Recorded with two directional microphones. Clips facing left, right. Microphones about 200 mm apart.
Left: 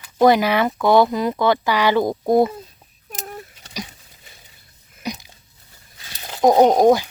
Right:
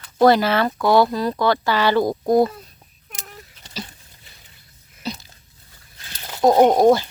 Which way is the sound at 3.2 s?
55° left (ahead or behind).